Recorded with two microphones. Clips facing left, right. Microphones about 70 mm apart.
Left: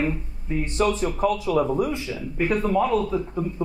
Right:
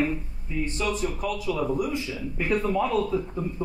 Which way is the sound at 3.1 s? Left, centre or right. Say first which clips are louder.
Left 2 dB; centre.